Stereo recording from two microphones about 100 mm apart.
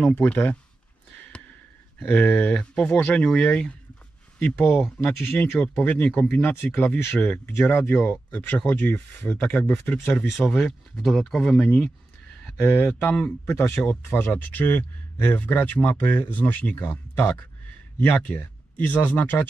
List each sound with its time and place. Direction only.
0.1 s speech: 15° left (ahead or behind)
2.0 s speech: 15° left (ahead or behind)
4.7 s speech: centre (ahead or behind)
5.2 s speech: 20° left (ahead or behind)